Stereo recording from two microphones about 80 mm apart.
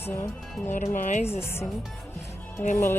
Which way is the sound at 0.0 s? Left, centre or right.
Left.